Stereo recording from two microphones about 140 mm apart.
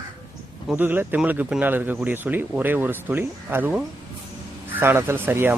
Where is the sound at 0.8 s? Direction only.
15° right (ahead or behind).